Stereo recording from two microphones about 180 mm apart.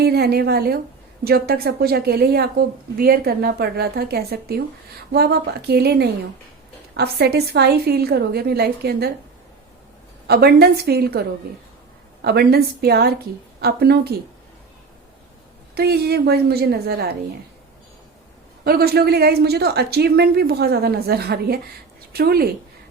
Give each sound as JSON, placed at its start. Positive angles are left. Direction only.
{"t": 0.0, "sound": "a woman's voice", "side_deg": -60}
{"t": 10.2, "sound": "a woman's voice", "side_deg": -60}
{"t": 12.2, "sound": "a woman's voice", "side_deg": -60}
{"t": 15.7, "sound": "a woman's voice", "side_deg": -60}
{"t": 18.6, "sound": "a woman's voice", "side_deg": -60}